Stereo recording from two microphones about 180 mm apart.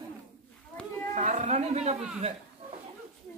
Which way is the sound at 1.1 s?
40° right (ahead or behind).